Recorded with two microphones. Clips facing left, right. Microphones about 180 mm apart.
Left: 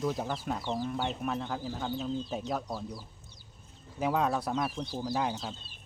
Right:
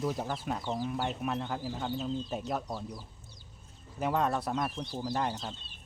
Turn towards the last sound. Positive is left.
turn(degrees=5)  # may be behind; listen again after turning